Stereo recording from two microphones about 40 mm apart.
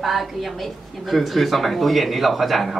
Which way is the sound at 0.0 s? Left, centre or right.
Centre.